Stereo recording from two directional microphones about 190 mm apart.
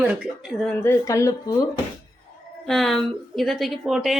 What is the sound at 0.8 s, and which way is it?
Speech, 15° left (ahead or behind).